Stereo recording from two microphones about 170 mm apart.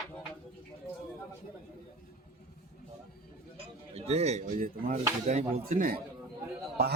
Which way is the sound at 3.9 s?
40° right (ahead or behind).